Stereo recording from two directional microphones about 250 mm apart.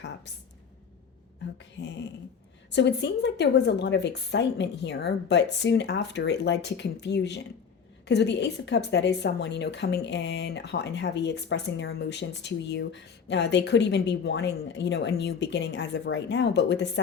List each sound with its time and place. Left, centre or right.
2.6 s a woman's voice: left